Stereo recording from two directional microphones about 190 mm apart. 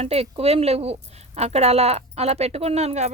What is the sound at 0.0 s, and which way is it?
Speech, 35° right (ahead or behind).